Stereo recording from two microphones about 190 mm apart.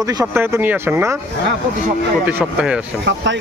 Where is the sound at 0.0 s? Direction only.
10° right (ahead or behind).